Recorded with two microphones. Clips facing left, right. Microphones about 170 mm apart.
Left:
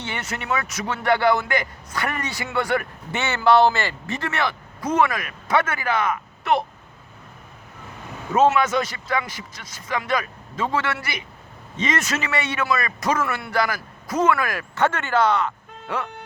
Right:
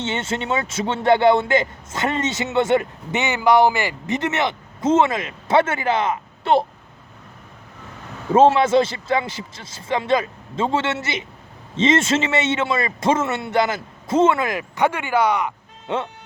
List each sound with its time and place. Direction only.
0.0 s speech: 25° right (ahead or behind)
8.3 s speech: 30° right (ahead or behind); by 15.5 s 15° right (ahead or behind)
15.9 s speech: 25° right (ahead or behind)